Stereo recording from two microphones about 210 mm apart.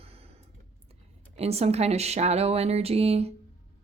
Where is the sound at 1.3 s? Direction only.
30° right (ahead or behind).